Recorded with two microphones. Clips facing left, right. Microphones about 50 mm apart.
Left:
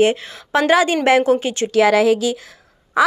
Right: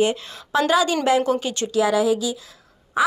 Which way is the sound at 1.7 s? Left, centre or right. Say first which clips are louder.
Left 5 dB; left.